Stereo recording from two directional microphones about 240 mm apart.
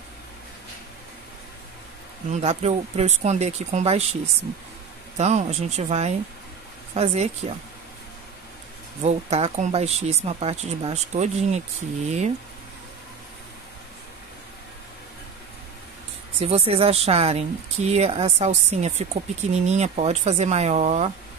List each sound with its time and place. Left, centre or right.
2.3 s speech: right
9.0 s speech: right
16.3 s speech: right